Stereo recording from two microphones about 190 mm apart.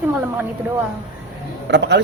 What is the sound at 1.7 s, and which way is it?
Speech, 65° right (ahead or behind).